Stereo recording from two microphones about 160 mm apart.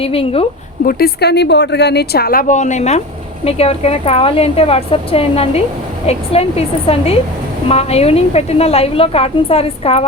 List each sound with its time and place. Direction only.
0.0 s a woman's voice: 35° left (ahead or behind)
0.9 s a woman's voice: 75° left (ahead or behind); by 10.1 s 40° left (ahead or behind)